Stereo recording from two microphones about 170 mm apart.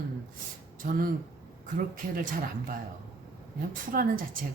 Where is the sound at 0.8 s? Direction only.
55° right (ahead or behind).